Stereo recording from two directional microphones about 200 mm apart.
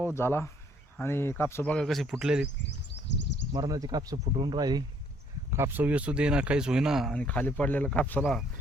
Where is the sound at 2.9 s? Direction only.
60° left (ahead or behind).